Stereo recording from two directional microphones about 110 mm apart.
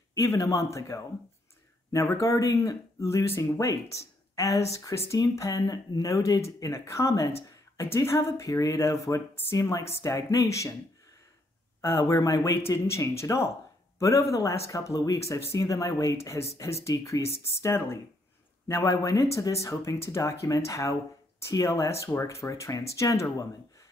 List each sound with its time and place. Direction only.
0.1 s speech: 30° left (ahead or behind)
11.8 s speech: 25° left (ahead or behind)